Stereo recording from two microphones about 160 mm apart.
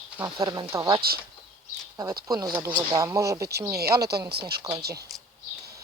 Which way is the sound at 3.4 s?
90° right.